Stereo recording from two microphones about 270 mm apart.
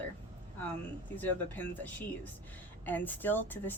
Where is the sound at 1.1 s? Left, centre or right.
Centre.